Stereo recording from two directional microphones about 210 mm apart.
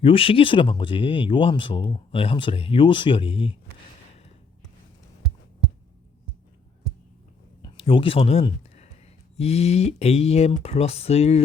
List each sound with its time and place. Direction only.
0.0 s speech: 25° left (ahead or behind)
7.6 s a sound: 25° left (ahead or behind)
9.3 s speech: 30° left (ahead or behind)